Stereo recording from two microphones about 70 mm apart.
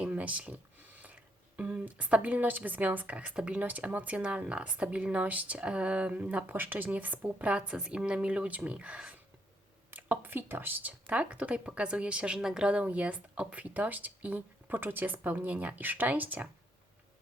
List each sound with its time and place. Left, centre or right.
0.0 s speech: right
9.9 s speech: right